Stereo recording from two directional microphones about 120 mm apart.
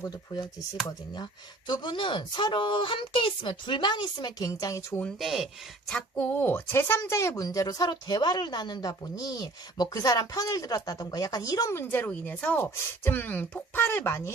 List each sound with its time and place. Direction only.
0.0 s speech: 35° left (ahead or behind)
5.2 s speech: centre (ahead or behind); by 14.3 s 20° left (ahead or behind)